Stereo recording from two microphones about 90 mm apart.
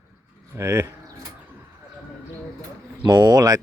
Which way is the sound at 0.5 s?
35° right (ahead or behind).